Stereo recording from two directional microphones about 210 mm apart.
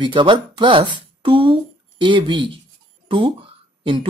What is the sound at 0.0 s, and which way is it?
Speech, 20° right (ahead or behind).